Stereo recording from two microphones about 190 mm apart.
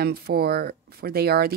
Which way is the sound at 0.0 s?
55° right (ahead or behind).